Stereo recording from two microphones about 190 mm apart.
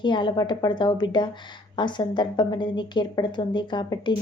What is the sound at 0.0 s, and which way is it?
A woman's voice, 25° left (ahead or behind).